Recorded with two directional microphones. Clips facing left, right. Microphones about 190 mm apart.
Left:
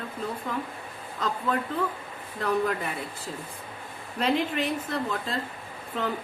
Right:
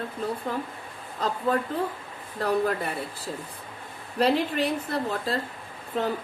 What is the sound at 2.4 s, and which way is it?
Speech, 35° right (ahead or behind).